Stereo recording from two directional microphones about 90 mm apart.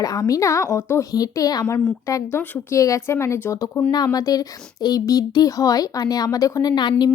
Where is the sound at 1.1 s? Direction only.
45° left (ahead or behind).